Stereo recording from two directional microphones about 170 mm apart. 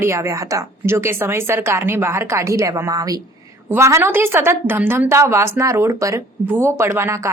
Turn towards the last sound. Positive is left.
turn(degrees=-15)  # may be behind; listen again after turning